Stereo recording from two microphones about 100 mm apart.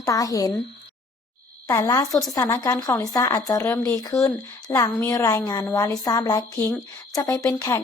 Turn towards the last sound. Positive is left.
turn(degrees=35)  # may be behind; listen again after turning